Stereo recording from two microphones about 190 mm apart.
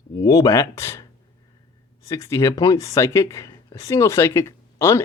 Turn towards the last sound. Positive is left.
turn(degrees=15)  # may be behind; listen again after turning